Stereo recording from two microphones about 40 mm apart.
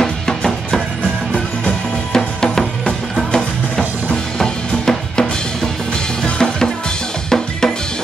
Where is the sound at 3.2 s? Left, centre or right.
Centre.